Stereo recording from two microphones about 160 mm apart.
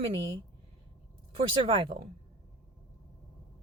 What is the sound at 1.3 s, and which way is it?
Speech, 35° right (ahead or behind).